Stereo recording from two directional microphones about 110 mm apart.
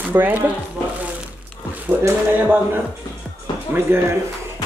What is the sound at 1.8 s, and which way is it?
Speech, 15° right (ahead or behind).